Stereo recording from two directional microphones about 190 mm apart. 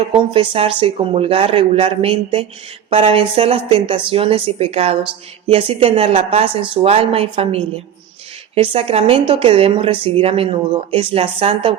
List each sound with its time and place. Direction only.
0.1 s speech: 25° right (ahead or behind)
8.5 s speech: 30° right (ahead or behind)